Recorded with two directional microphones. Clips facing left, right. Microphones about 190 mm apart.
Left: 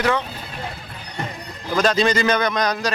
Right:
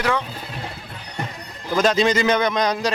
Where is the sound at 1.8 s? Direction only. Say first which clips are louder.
Even; 20° right (ahead or behind).